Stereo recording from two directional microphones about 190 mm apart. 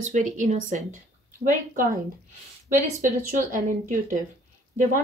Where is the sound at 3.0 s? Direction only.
40° right (ahead or behind).